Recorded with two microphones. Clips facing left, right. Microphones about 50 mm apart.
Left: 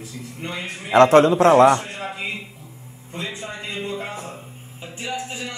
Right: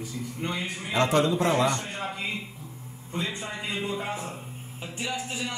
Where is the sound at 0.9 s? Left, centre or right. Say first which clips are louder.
Left 11 dB; left.